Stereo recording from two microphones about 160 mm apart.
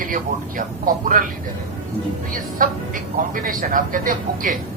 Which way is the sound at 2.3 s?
60° right (ahead or behind).